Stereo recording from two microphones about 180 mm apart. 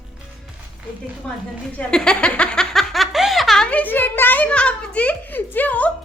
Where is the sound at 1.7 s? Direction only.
5° left (ahead or behind).